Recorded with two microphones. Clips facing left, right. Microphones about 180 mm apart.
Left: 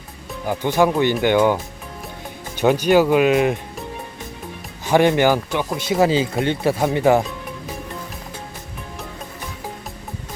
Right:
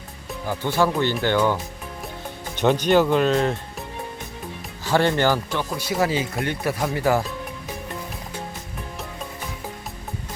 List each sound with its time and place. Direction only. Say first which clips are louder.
0.4 s speech: left 4 dB; 15° left (ahead or behind)
2.6 s speech: left 3 dB; 10° left (ahead or behind)
4.9 s speech: left 4 dB; 15° left (ahead or behind)